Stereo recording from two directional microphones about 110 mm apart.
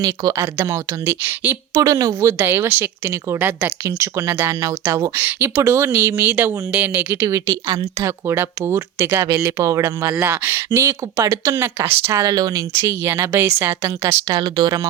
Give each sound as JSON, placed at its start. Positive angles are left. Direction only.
{"t": 0.0, "sound": "speech", "side_deg": -35}
{"t": 0.3, "sound": "speech", "side_deg": -20}
{"t": 1.7, "sound": "speech", "side_deg": -30}
{"t": 2.4, "sound": "speech", "side_deg": -20}
{"t": 5.1, "sound": "speech", "side_deg": -20}
{"t": 7.2, "sound": "speech", "side_deg": -25}
{"t": 12.2, "sound": "speech", "side_deg": -35}
{"t": 12.7, "sound": "speech", "side_deg": -20}